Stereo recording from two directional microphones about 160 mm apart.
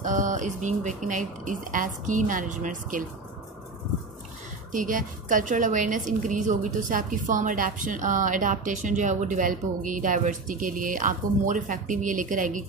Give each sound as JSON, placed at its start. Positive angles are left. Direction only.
{"t": 0.0, "sound": "speech", "side_deg": -50}
{"t": 4.7, "sound": "a woman's voice", "side_deg": -55}